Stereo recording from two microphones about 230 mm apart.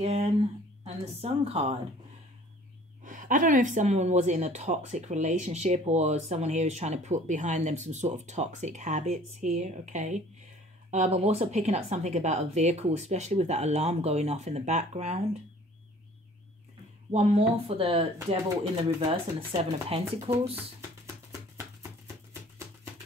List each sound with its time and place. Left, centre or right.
0.0 s speech: right
3.0 s speech: right
17.1 s speech: right
21.3 s music: centre